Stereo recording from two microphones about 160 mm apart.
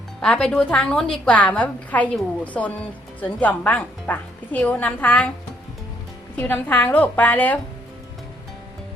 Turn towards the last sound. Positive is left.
turn(degrees=10)  # may be behind; listen again after turning